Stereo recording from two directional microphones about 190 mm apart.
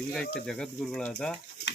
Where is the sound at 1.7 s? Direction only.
65° left (ahead or behind).